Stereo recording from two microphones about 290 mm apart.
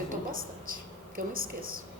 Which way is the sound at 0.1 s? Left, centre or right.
Right.